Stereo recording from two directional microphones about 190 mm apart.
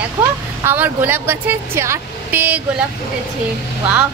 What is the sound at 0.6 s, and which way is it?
Speech, 10° right (ahead or behind).